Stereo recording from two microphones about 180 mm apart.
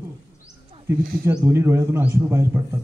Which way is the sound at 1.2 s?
15° right (ahead or behind).